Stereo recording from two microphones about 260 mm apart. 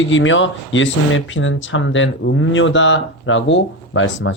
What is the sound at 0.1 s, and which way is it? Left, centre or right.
Speech, left.